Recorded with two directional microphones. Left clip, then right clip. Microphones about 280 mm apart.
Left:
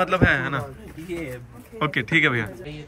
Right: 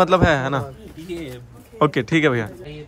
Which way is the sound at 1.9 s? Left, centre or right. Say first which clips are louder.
Right 1 dB; centre.